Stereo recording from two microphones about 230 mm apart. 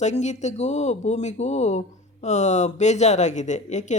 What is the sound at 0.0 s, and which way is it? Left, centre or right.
Speech, left.